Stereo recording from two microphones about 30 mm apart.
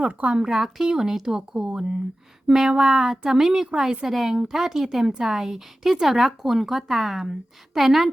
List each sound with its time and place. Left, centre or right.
0.0 s speech: right
0.3 s speech: right
0.5 s a woman's voice: centre